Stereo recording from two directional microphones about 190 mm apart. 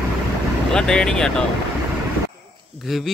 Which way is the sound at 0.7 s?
5° left (ahead or behind).